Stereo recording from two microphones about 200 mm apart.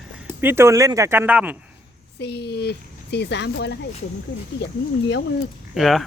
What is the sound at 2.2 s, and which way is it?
Speech, 55° left (ahead or behind).